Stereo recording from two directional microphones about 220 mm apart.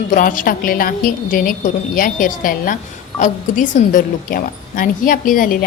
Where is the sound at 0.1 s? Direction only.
40° left (ahead or behind).